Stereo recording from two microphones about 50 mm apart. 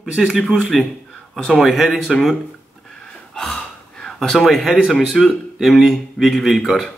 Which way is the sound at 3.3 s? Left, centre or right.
Centre.